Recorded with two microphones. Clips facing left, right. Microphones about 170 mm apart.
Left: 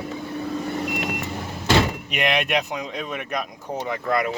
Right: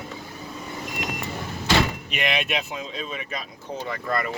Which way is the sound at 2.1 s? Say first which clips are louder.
Left 4 dB; 60° left (ahead or behind).